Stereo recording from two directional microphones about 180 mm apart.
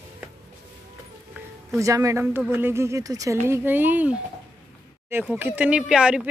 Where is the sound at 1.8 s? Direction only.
15° right (ahead or behind).